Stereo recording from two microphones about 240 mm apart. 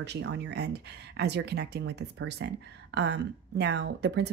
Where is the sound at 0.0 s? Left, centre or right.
Right.